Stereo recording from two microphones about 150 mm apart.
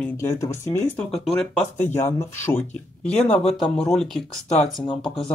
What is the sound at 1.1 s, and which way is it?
Speech, 5° left (ahead or behind).